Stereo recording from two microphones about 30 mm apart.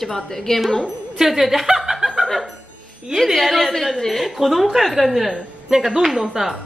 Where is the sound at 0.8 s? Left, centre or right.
Centre.